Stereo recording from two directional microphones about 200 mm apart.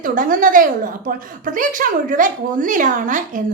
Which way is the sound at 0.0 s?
45° right (ahead or behind).